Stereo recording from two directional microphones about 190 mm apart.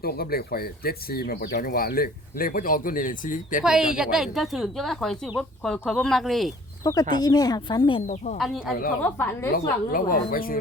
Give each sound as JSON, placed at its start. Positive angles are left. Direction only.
{"t": 0.0, "sound": "speech", "side_deg": 55}
{"t": 3.6, "sound": "a woman's voice", "side_deg": -5}
{"t": 6.8, "sound": "speech", "side_deg": 20}
{"t": 8.0, "sound": "speech", "side_deg": 40}
{"t": 8.4, "sound": "a woman's voice", "side_deg": 0}
{"t": 9.0, "sound": "a woman's voice", "side_deg": 10}
{"t": 9.9, "sound": "speech", "side_deg": 50}